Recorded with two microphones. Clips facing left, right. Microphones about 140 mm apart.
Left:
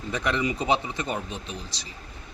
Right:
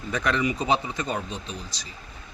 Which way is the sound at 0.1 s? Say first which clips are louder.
Right 1 dB; 20° left (ahead or behind).